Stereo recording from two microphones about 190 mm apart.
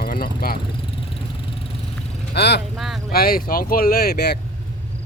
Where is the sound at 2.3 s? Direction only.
60° left (ahead or behind).